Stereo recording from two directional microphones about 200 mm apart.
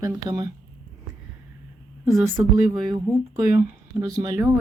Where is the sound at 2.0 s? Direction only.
15° right (ahead or behind).